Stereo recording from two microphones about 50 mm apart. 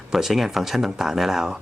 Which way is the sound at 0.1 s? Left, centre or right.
Centre.